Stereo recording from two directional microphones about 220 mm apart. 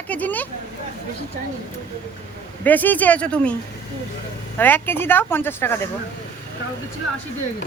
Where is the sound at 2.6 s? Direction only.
10° left (ahead or behind).